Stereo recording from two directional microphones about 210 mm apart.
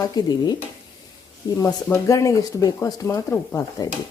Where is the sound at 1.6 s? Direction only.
15° left (ahead or behind).